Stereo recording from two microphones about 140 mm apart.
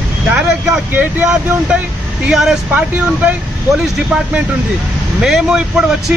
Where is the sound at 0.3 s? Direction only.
5° right (ahead or behind).